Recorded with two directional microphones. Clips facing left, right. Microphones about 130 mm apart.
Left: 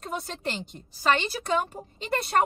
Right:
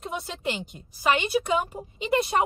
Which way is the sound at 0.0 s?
5° right (ahead or behind).